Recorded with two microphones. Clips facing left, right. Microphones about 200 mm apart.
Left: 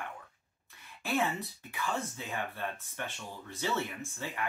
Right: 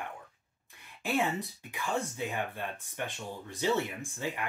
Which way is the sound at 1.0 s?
15° right (ahead or behind).